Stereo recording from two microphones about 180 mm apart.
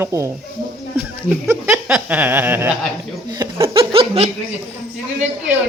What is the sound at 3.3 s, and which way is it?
Laughter, 20° right (ahead or behind).